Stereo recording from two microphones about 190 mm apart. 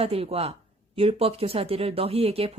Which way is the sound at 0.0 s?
30° right (ahead or behind).